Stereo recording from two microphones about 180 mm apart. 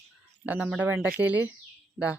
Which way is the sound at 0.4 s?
10° right (ahead or behind).